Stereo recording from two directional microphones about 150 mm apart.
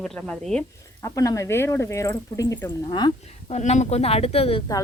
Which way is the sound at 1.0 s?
20° left (ahead or behind).